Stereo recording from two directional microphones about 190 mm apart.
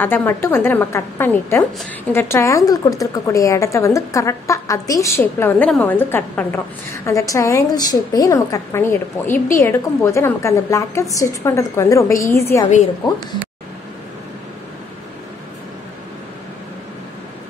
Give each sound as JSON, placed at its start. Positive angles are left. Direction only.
{"t": 0.0, "sound": "speech", "side_deg": 10}